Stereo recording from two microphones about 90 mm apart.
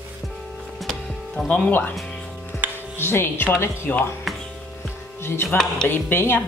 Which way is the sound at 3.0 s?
25° left (ahead or behind).